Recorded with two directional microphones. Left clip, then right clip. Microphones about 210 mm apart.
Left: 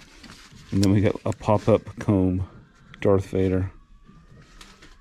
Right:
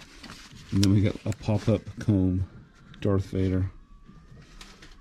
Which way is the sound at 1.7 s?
15° right (ahead or behind).